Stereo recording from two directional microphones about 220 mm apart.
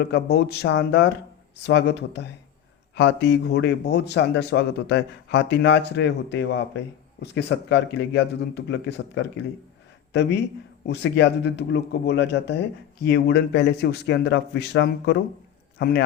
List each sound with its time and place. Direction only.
0.0 s a man's voice: 45° left (ahead or behind)